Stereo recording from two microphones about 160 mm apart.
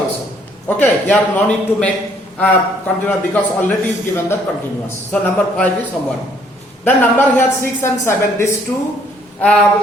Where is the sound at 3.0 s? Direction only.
10° left (ahead or behind).